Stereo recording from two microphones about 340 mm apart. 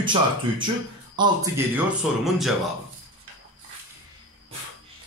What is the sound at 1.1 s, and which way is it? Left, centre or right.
Speech, centre.